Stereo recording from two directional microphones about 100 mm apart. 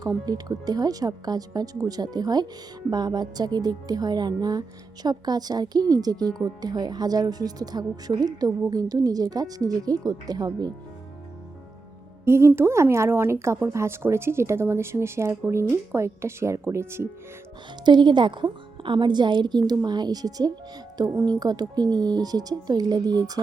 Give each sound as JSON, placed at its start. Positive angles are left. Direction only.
{"t": 0.3, "sound": "a woman's voice", "side_deg": -40}
{"t": 12.2, "sound": "speech", "side_deg": -25}
{"t": 17.8, "sound": "a woman's voice", "side_deg": -50}